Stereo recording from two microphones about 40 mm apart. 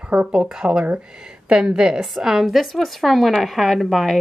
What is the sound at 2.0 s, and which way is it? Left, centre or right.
A woman's voice, centre.